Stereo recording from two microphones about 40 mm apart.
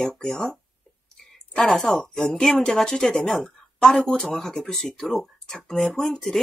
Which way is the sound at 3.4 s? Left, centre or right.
Centre.